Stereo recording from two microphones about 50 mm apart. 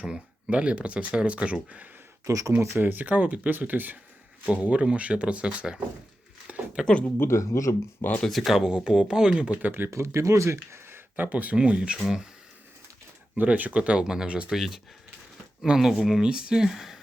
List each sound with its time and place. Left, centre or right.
0.0 s speech: right
2.2 s speech: right
2.7 s speech: right
4.4 s speech: right
6.5 s a sound: right
7.2 s speech: left
8.3 s speech: centre
8.6 s speech: centre
9.6 s speech: right
9.9 s speech: right
11.2 s speech: right
11.5 s speech: centre
13.3 s speech: right; by 14.8 s centre
15.8 s speech: centre